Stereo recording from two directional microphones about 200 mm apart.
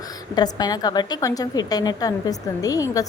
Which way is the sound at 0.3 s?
20° left (ahead or behind).